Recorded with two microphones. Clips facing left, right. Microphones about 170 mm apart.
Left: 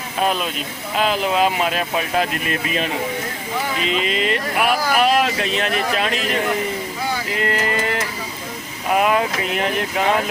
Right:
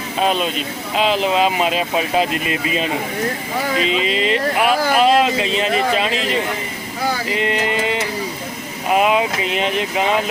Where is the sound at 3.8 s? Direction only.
Centre (ahead or behind).